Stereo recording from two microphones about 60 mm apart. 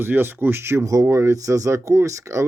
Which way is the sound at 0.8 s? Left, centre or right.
Right.